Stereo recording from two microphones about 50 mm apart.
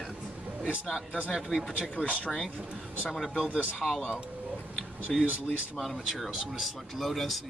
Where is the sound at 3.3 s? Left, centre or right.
Centre.